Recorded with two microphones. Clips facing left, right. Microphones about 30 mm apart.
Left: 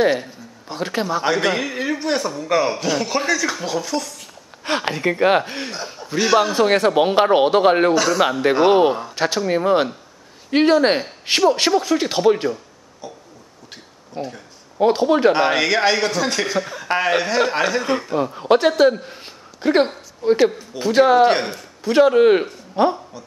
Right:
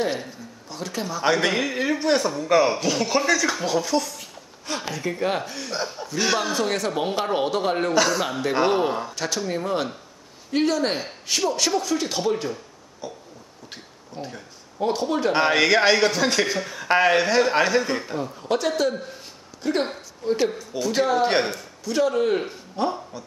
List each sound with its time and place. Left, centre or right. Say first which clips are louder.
0.7 s a man's voice: left 7 dB; left
1.2 s a man's voice: right 2 dB; centre
4.6 s a man's voice: left 8 dB; left
6.1 s a man's voice: left 7 dB; centre
6.5 s a man's voice: left 8 dB; left
7.9 s a man's voice: left 3 dB; centre
8.2 s a man's voice: left 7 dB; left
11.7 s speech: left 6 dB; left
13.0 s a man's voice: even; centre
14.2 s speech: left 6 dB; left
15.3 s a man's voice: left 1 dB; centre
18.1 s a man's voice: left 8 dB; left
21.3 s a man's voice: left 3 dB; centre
21.8 s a man's voice: left 9 dB; left